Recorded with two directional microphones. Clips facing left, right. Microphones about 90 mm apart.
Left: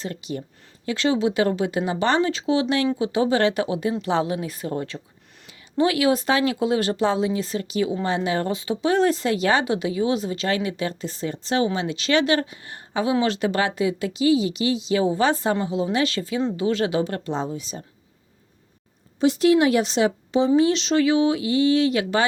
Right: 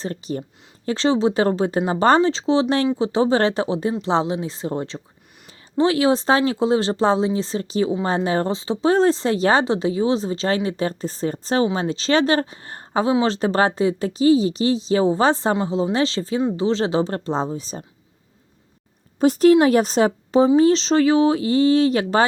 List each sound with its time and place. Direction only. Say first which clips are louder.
0.0 s speech: right 3 dB; 35° right (ahead or behind)
19.2 s speech: right 4 dB; 40° right (ahead or behind)